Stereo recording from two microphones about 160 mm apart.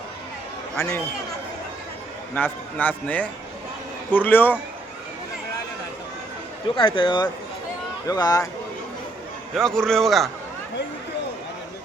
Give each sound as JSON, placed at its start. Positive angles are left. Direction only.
{"t": 0.8, "sound": "speech", "side_deg": 20}
{"t": 2.3, "sound": "a man's voice", "side_deg": 10}
{"t": 6.7, "sound": "speech", "side_deg": 30}
{"t": 9.6, "sound": "a man's voice", "side_deg": 5}